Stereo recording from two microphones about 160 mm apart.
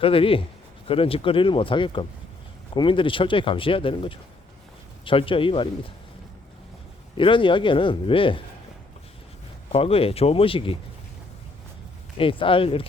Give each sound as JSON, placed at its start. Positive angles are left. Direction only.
{"t": 0.0, "sound": "speech", "side_deg": 35}
{"t": 7.2, "sound": "speech", "side_deg": 30}
{"t": 9.7, "sound": "speech", "side_deg": 35}
{"t": 12.1, "sound": "speech", "side_deg": 35}